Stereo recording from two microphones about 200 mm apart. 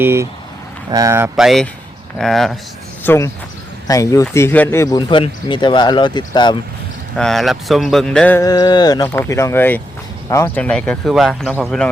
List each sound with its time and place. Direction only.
0.0 s speech: 10° right (ahead or behind); by 6.6 s 20° left (ahead or behind)
7.2 s speech: centre (ahead or behind)
8.4 s speech: 20° left (ahead or behind); by 11.9 s centre (ahead or behind)